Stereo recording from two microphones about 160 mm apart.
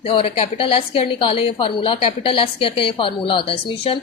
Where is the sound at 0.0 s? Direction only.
35° left (ahead or behind).